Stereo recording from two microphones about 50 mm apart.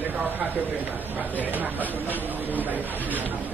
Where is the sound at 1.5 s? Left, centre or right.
Right.